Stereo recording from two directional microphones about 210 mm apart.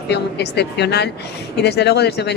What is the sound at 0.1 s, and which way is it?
Speech, 50° left (ahead or behind).